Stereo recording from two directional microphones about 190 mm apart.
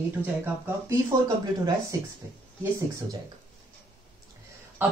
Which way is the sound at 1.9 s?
20° right (ahead or behind).